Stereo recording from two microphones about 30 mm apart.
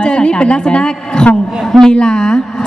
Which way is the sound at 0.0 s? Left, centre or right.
Left.